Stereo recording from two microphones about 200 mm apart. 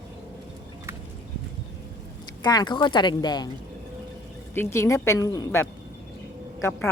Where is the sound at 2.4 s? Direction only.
20° left (ahead or behind).